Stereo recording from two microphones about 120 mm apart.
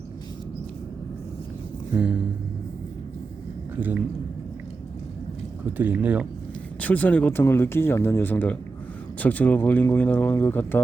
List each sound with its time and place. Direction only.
3.8 s a man's voice: 15° right (ahead or behind)
5.7 s speech: 15° right (ahead or behind)
6.7 s speech: 15° left (ahead or behind)